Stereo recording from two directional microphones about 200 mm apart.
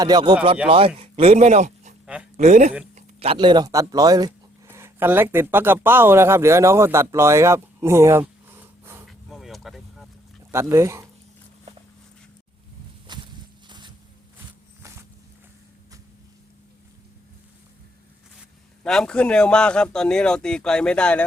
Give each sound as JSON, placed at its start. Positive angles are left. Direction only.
{"t": 0.0, "sound": "speech", "side_deg": -20}
{"t": 9.0, "sound": "a sound", "side_deg": 0}
{"t": 10.5, "sound": "speech", "side_deg": -15}
{"t": 13.1, "sound": "walk", "side_deg": -20}
{"t": 13.7, "sound": "a sound", "side_deg": -20}
{"t": 18.8, "sound": "a man's voice", "side_deg": 5}